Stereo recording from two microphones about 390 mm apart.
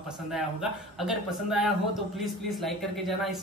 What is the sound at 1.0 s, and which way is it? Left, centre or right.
A woman's voice, centre.